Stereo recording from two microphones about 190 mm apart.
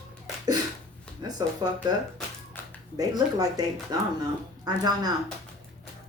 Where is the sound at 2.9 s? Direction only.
20° right (ahead or behind).